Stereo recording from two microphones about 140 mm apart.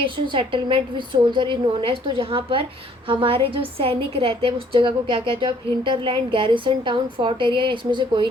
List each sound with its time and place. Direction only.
0.0 s a woman's voice: 35° right (ahead or behind)